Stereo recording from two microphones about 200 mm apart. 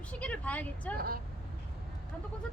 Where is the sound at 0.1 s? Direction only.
5° left (ahead or behind).